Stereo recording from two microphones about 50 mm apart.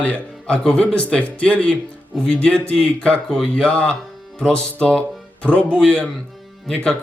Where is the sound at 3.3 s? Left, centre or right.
Centre.